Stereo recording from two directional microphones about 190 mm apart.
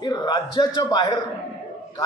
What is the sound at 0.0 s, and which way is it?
A man's voice, 20° left (ahead or behind).